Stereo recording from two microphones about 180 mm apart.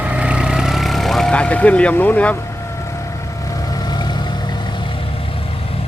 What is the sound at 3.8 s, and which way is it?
Vehicle, 25° left (ahead or behind).